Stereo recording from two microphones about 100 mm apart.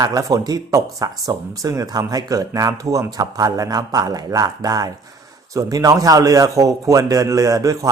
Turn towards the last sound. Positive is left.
turn(degrees=-35)  # may be behind; listen again after turning